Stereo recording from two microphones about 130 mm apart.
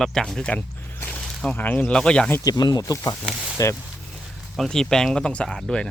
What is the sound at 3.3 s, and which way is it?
Speech, 5° right (ahead or behind).